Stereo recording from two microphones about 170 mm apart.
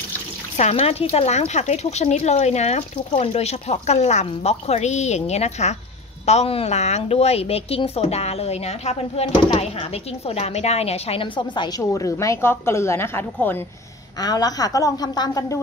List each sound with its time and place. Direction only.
0.6 s a woman's voice: 40° left (ahead or behind); by 15.6 s 20° left (ahead or behind)